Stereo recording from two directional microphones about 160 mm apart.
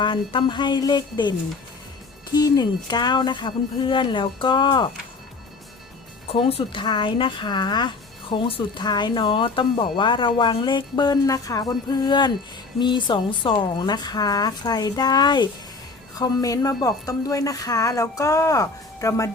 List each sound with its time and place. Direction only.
0.0 s speech: 30° left (ahead or behind)
6.2 s speech: 35° left (ahead or behind); by 19.3 s 20° left (ahead or behind)